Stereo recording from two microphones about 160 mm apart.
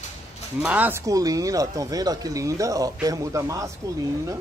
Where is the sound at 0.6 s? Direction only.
10° right (ahead or behind).